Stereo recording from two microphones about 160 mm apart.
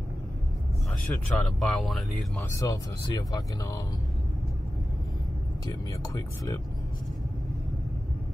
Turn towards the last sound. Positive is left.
turn(degrees=20)  # may be behind; listen again after turning